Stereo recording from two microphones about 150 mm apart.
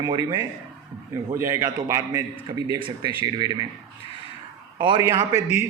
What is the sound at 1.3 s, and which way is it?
A man's voice, 15° right (ahead or behind).